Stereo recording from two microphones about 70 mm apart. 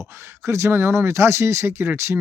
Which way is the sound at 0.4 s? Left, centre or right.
Right.